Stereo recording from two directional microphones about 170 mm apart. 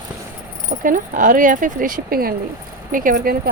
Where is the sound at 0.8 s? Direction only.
50° right (ahead or behind).